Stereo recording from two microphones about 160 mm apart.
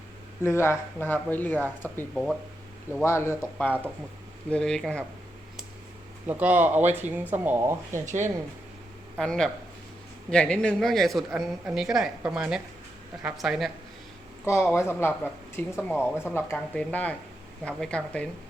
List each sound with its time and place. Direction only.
0.4 s speech: 15° left (ahead or behind)
6.2 s speech: 10° right (ahead or behind)
8.0 s speech: 50° right (ahead or behind)
9.1 s speech: 5° left (ahead or behind)
14.7 s speech: 15° left (ahead or behind)